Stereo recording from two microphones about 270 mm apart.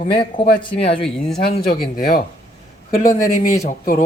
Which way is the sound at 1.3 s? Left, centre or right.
Left.